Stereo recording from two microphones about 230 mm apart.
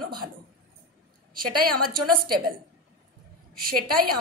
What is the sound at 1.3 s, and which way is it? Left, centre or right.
A woman's voice, right.